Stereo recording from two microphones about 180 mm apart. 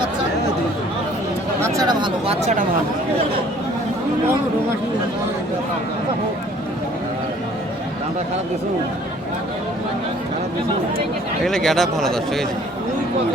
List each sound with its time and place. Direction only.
1.6 s speech: 20° right (ahead or behind); by 2.6 s 40° right (ahead or behind)
11.4 s speech: centre (ahead or behind)